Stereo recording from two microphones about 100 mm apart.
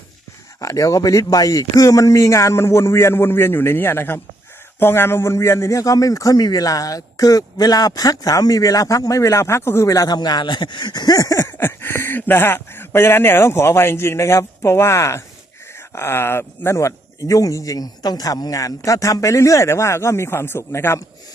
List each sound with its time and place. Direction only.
0.6 s a man's voice: 35° left (ahead or behind)
11.5 s a man's voice: 25° left (ahead or behind)